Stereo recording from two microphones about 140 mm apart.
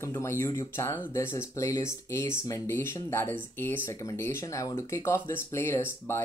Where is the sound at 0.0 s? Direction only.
20° left (ahead or behind).